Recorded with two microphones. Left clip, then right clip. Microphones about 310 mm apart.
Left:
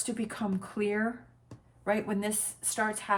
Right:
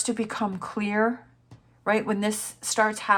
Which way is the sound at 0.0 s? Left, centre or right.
Centre.